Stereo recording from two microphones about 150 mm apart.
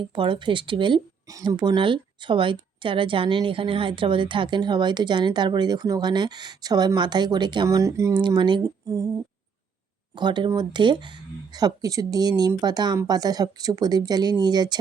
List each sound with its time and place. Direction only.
0.0 s a woman's voice: 35° right (ahead or behind)
8.2 s speech: 30° right (ahead or behind)